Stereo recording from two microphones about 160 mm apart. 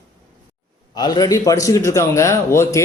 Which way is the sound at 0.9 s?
25° left (ahead or behind).